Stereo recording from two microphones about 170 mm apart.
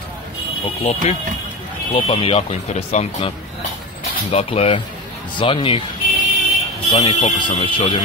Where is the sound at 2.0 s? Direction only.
35° left (ahead or behind).